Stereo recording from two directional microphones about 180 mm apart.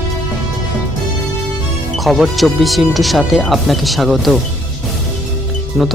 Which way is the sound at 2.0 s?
Centre (ahead or behind).